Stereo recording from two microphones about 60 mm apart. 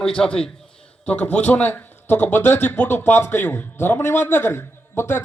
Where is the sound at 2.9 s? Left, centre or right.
Left.